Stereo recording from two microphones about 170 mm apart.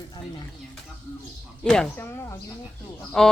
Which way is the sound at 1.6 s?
5° left (ahead or behind).